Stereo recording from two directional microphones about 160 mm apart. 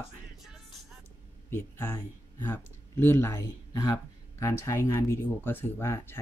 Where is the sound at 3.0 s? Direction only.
15° left (ahead or behind).